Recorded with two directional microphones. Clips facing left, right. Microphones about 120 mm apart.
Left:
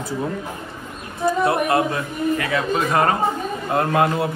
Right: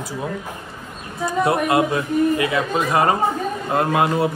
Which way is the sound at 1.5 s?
25° right (ahead or behind).